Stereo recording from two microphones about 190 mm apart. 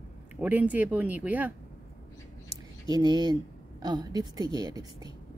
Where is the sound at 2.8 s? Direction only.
25° right (ahead or behind).